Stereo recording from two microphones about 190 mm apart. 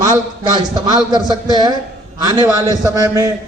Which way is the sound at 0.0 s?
20° right (ahead or behind).